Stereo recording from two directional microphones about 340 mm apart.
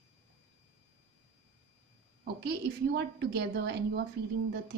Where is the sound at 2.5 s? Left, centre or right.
Right.